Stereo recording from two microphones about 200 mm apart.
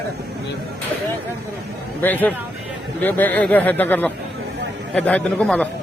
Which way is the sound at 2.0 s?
10° left (ahead or behind).